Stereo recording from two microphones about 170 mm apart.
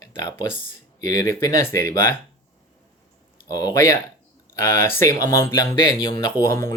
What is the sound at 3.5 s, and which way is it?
Speech, 20° left (ahead or behind).